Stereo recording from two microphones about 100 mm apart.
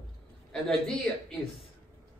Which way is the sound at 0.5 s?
5° left (ahead or behind).